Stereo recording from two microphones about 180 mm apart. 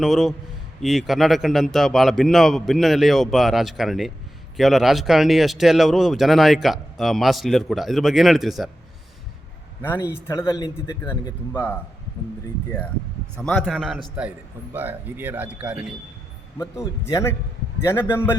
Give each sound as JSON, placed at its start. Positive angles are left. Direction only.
{"t": 0.0, "sound": "speech", "side_deg": 0}
{"t": 9.8, "sound": "speech", "side_deg": 10}
{"t": 13.4, "sound": "a man's voice", "side_deg": 5}
{"t": 17.1, "sound": "speech", "side_deg": 15}